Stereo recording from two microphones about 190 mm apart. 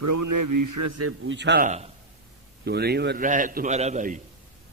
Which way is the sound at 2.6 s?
60° right (ahead or behind).